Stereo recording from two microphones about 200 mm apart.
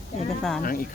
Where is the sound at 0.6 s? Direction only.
45° left (ahead or behind).